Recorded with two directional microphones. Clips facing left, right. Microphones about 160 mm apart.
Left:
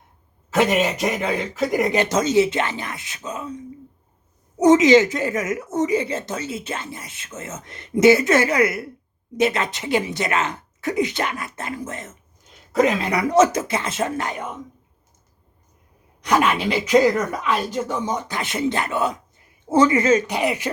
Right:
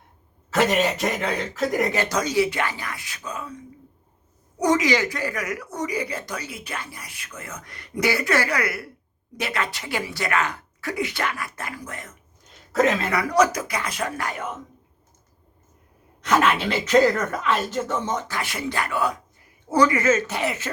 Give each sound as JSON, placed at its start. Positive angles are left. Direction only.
{"t": 0.5, "sound": "speech", "side_deg": 0}
{"t": 1.9, "sound": "speech", "side_deg": 20}
{"t": 12.7, "sound": "speech", "side_deg": 0}
{"t": 13.0, "sound": "speech", "side_deg": 20}
{"t": 16.2, "sound": "speech", "side_deg": 15}